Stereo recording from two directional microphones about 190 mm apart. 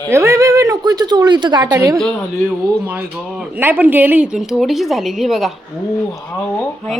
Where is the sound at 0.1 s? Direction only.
15° right (ahead or behind).